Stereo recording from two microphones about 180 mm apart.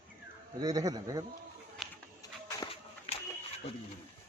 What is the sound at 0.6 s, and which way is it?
Speech, 20° right (ahead or behind).